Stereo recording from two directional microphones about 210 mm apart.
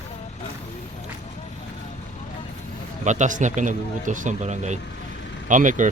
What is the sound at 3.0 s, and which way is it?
Speech, 35° right (ahead or behind).